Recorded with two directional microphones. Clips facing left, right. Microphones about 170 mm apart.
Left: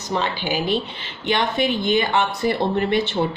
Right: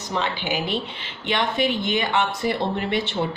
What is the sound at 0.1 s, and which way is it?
Speech, 35° left (ahead or behind).